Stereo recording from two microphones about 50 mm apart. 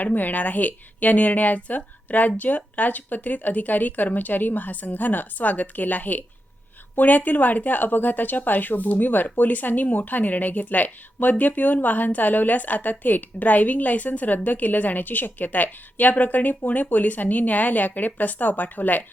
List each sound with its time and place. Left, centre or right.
0.0 s speech: left